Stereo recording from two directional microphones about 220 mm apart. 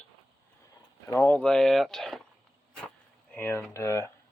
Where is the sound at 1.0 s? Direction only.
10° left (ahead or behind).